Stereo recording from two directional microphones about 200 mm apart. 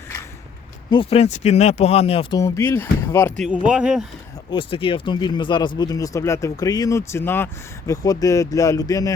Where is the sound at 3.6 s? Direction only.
5° right (ahead or behind).